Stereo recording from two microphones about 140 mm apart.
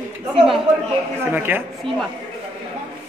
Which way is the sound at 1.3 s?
15° right (ahead or behind).